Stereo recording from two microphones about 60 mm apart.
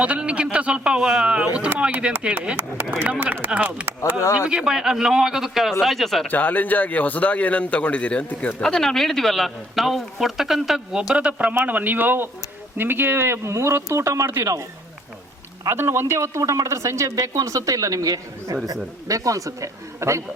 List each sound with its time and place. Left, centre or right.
0.0 s a man's voice: centre
3.8 s a man's voice: right
4.4 s a man's voice: centre
6.2 s a man's voice: left
8.6 s a man's voice: centre; by 14.3 s right
15.7 s speech: right
16.4 s speech: right
16.6 s speech: right